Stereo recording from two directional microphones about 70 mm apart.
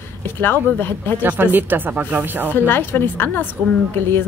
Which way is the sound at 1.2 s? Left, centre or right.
Right.